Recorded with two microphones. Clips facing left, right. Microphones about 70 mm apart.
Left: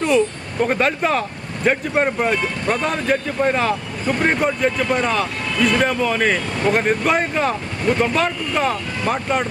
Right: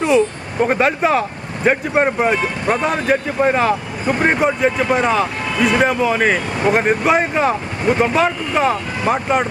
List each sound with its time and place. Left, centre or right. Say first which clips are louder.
0.6 s speech: right 3 dB; centre